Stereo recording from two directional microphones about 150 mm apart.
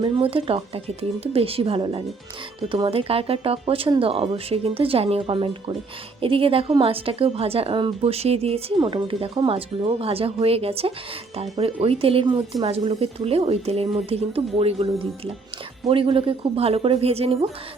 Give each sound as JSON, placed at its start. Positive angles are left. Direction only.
{"t": 0.0, "sound": "a woman's voice", "side_deg": -40}